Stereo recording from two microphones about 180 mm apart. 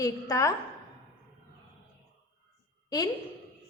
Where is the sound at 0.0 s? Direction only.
20° left (ahead or behind).